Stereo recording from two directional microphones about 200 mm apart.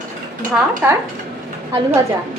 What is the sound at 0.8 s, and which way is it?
Speech, 10° right (ahead or behind).